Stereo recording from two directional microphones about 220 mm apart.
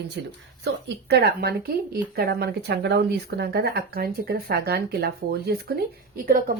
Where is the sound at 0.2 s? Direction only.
55° right (ahead or behind).